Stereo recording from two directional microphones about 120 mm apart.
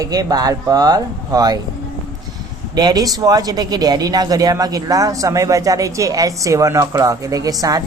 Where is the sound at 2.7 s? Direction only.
35° right (ahead or behind).